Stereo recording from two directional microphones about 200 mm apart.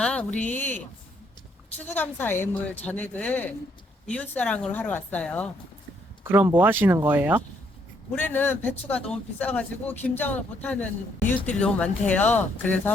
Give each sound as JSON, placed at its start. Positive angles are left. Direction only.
{"t": 0.0, "sound": "speech", "side_deg": 5}
{"t": 6.3, "sound": "speech", "side_deg": -10}
{"t": 8.1, "sound": "speech", "side_deg": 10}